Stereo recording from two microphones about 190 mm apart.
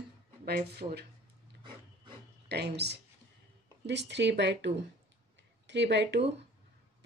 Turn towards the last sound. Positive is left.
turn(degrees=-65)  # may be behind; listen again after turning